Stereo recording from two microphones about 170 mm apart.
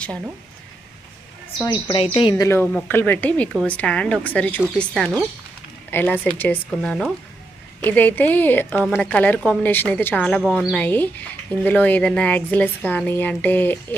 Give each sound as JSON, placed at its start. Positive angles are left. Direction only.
{"t": 1.6, "sound": "a woman's voice", "side_deg": 25}
{"t": 2.3, "sound": "a woman's voice", "side_deg": 15}